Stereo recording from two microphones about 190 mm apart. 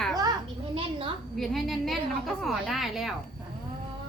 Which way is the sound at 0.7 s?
30° right (ahead or behind).